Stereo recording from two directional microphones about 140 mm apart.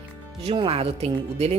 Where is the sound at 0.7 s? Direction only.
45° right (ahead or behind).